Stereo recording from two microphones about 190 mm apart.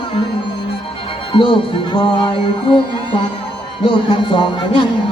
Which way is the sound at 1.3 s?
25° left (ahead or behind).